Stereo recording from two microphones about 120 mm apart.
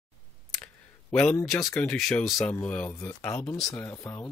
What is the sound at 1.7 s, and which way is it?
Speech, 5° left (ahead or behind).